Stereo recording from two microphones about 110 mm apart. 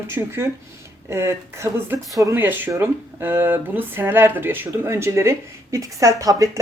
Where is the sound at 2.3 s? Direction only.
20° right (ahead or behind).